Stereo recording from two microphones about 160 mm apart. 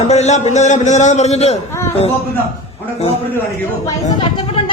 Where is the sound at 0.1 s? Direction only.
45° left (ahead or behind).